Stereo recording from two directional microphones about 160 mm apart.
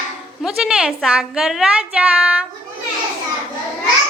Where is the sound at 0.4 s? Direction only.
5° right (ahead or behind).